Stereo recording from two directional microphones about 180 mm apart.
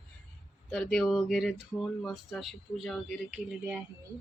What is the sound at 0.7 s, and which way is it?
Speech, 5° left (ahead or behind).